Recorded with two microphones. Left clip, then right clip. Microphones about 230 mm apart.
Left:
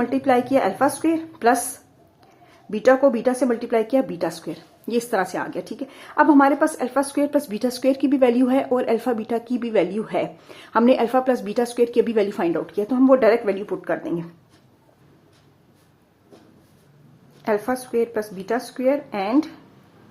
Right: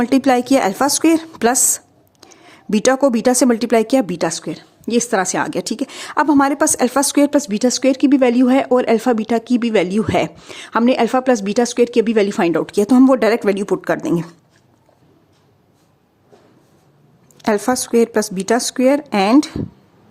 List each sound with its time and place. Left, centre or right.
0.0 s a woman's voice: right
17.4 s a woman's voice: right